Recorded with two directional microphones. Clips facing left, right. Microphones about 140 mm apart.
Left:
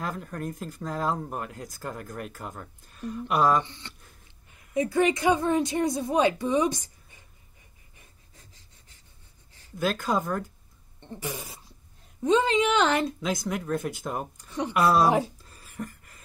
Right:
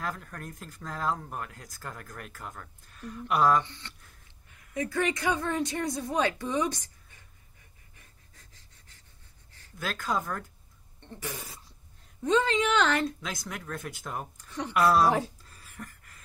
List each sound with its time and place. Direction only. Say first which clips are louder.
0.0 s speech: left 4 dB; 15° left (ahead or behind)
4.7 s speech: left 6 dB; 20° left (ahead or behind)
9.8 s speech: left 5 dB; 10° left (ahead or behind)
11.0 s cough: left 4 dB; 15° left (ahead or behind)
12.2 s speech: left 3 dB; 15° left (ahead or behind)